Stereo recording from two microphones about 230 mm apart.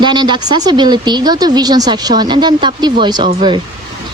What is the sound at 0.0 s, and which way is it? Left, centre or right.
A woman's voice, centre.